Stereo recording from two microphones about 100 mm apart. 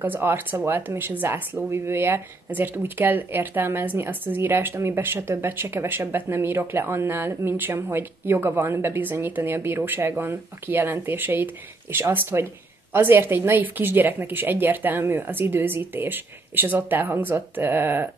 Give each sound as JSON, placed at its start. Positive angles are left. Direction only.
{"t": 0.0, "sound": "speech", "side_deg": -20}